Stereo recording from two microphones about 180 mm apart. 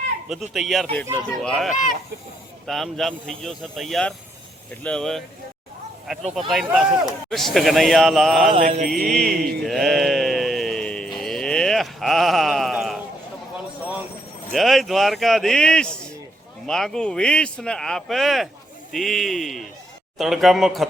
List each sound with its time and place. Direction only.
0.5 s a man's voice: centre (ahead or behind)
8.5 s mantra: 30° right (ahead or behind)
8.9 s mantra: centre (ahead or behind)
14.5 s a man's voice: centre (ahead or behind)